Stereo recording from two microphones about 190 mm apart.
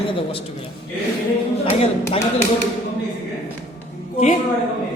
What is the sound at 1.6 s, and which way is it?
Speech, 30° left (ahead or behind).